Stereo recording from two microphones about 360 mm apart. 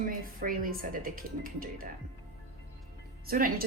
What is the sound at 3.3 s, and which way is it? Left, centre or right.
Speech, right.